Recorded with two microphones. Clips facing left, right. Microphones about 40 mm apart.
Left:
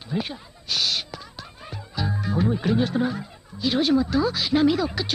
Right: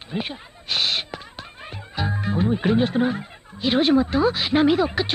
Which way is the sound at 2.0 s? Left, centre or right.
Right.